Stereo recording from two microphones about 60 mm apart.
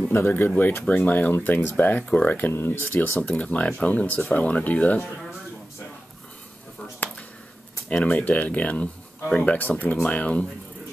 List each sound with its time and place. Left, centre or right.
0.1 s speech: left
3.2 s speech: centre
7.9 s speech: left